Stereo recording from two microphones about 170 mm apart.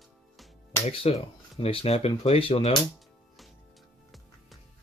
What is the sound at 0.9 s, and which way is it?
Speech, 35° left (ahead or behind).